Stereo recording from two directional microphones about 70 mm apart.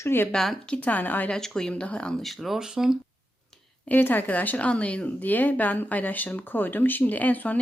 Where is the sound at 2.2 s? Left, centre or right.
Centre.